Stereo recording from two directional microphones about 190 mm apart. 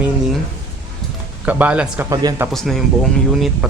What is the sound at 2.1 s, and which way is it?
Speech, 20° right (ahead or behind).